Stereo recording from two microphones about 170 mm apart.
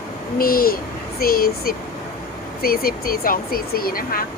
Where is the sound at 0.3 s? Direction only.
60° left (ahead or behind).